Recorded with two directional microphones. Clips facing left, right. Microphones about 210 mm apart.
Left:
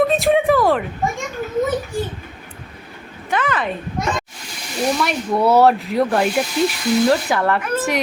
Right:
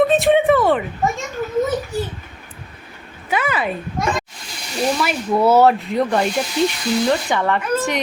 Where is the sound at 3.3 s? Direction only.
10° right (ahead or behind).